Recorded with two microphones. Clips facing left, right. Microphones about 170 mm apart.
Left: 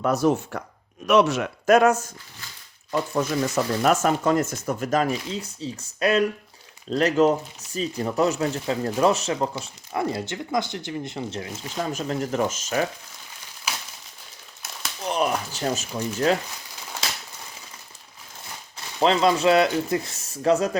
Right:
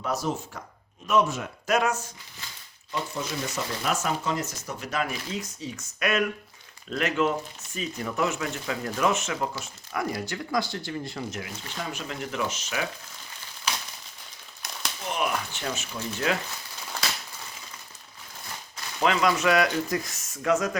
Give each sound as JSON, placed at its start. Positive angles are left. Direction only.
{"t": 0.0, "sound": "speech", "side_deg": 60}
{"t": 1.0, "sound": "speech", "side_deg": 80}
{"t": 1.6, "sound": "speech", "side_deg": 50}
{"t": 5.3, "sound": "speech", "side_deg": 30}
{"t": 11.8, "sound": "speech", "side_deg": 40}
{"t": 13.7, "sound": "a sound", "side_deg": 5}
{"t": 15.0, "sound": "speech", "side_deg": 35}
{"t": 18.9, "sound": "speech", "side_deg": 30}